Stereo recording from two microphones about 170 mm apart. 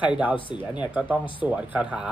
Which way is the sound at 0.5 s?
30° left (ahead or behind).